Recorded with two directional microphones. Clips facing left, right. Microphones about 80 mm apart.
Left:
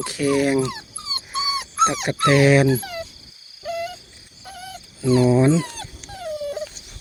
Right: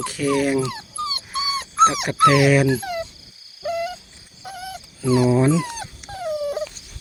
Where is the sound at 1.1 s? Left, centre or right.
Left.